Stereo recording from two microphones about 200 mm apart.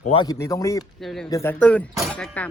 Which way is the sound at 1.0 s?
Centre (ahead or behind).